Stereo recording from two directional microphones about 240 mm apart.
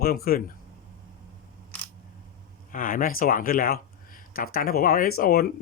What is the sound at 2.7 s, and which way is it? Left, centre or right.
Speech, left.